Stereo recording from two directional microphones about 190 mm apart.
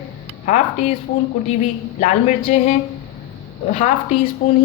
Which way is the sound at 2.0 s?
40° left (ahead or behind).